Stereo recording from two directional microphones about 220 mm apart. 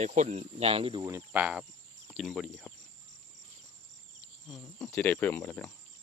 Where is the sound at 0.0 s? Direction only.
30° right (ahead or behind).